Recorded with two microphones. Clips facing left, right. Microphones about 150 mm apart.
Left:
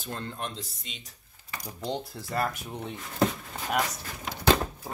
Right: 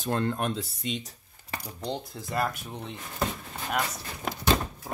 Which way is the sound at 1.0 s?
35° right (ahead or behind).